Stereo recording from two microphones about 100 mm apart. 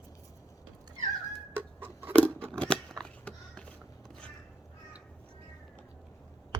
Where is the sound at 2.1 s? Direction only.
15° left (ahead or behind).